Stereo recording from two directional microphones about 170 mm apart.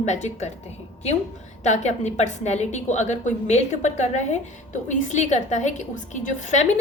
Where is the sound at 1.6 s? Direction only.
45° left (ahead or behind).